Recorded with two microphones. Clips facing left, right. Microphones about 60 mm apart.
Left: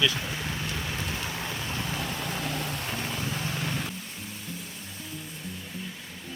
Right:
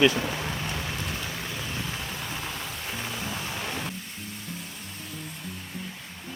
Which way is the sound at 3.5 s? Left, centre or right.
Centre.